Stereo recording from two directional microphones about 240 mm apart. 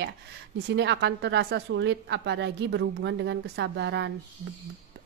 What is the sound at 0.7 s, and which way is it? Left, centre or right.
A woman's voice, right.